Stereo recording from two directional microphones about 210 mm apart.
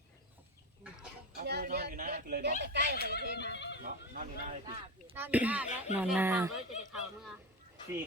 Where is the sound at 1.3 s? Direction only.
45° right (ahead or behind).